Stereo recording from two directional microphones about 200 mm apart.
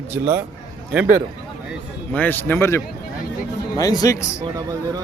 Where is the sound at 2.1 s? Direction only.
10° left (ahead or behind).